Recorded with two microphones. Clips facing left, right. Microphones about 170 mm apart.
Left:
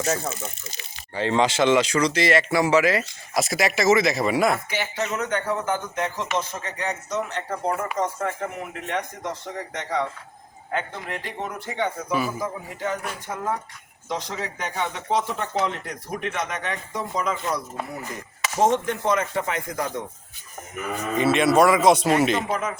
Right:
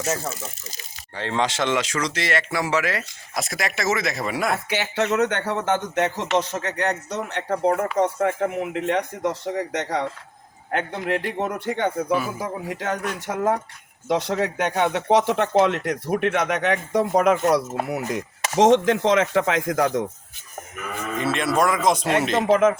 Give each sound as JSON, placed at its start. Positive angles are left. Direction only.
{"t": 0.0, "sound": "speech", "side_deg": -5}
{"t": 4.7, "sound": "speech", "side_deg": -70}
{"t": 14.1, "sound": "speech", "side_deg": -65}
{"t": 18.5, "sound": "chopping", "side_deg": -90}
{"t": 21.2, "sound": "speech", "side_deg": 0}
{"t": 22.4, "sound": "chopping", "side_deg": -90}